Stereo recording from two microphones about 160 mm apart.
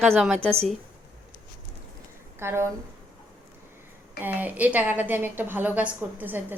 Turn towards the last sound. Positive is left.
turn(degrees=-10)  # may be behind; listen again after turning